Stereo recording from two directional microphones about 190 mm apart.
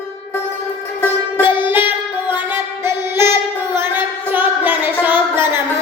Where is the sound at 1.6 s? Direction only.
10° right (ahead or behind).